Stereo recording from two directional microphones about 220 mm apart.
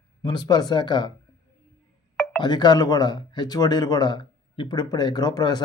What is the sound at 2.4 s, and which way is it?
Speech, 20° left (ahead or behind).